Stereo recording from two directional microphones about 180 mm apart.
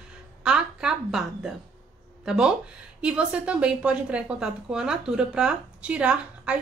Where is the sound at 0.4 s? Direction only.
5° right (ahead or behind).